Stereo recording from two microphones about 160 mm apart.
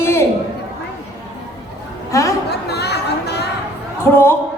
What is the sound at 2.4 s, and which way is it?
Chatter, 90° left.